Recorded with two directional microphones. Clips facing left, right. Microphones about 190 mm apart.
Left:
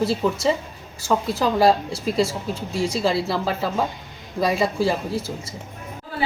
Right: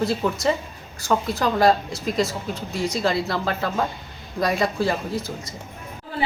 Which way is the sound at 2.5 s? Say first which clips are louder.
Left 1 dB; 30° left (ahead or behind).